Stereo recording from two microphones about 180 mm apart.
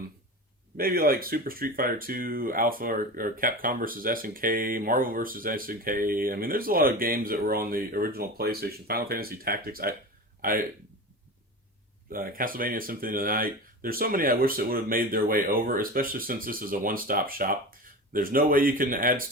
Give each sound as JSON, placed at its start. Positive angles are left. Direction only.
{"t": 0.8, "sound": "speech", "side_deg": -55}
{"t": 12.0, "sound": "speech", "side_deg": -50}